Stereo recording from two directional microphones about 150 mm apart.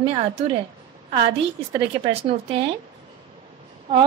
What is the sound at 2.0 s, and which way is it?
Speech, 40° right (ahead or behind).